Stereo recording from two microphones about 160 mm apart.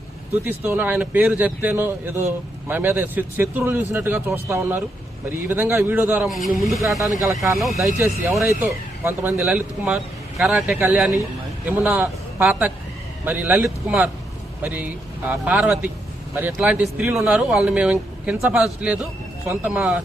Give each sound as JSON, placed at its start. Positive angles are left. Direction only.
{"t": 0.4, "sound": "speech", "side_deg": -15}
{"t": 6.2, "sound": "speech", "side_deg": 0}
{"t": 8.4, "sound": "speech", "side_deg": -15}
{"t": 10.8, "sound": "a man's voice", "side_deg": -15}